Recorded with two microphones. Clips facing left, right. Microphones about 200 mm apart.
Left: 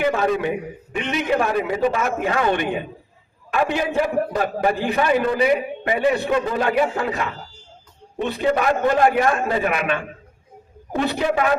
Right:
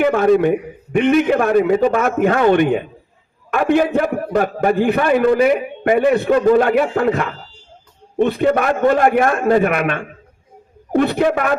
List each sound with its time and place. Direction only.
0.0 s a man's voice: 55° right (ahead or behind)
10.9 s a man's voice: 55° right (ahead or behind)